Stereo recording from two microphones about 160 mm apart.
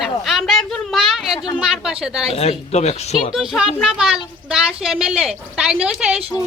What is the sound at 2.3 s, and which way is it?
Speech, 40° left (ahead or behind).